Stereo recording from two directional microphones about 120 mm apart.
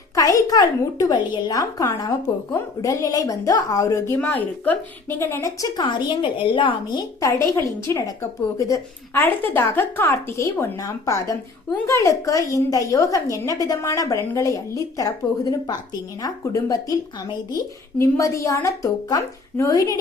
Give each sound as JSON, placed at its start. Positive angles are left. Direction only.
{"t": 0.2, "sound": "a woman's voice", "side_deg": 30}
{"t": 18.0, "sound": "a woman's voice", "side_deg": 25}